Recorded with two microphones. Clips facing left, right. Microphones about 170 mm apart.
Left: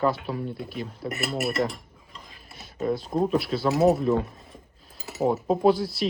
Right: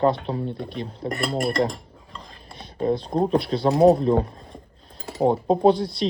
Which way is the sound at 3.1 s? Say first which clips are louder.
Right 3 dB; 30° right (ahead or behind).